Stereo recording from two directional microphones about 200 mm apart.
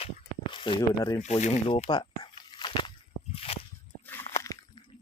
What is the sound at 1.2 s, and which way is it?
Speech, 35° left (ahead or behind).